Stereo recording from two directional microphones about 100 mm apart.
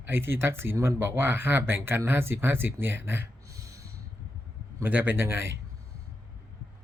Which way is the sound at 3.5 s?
35° right (ahead or behind).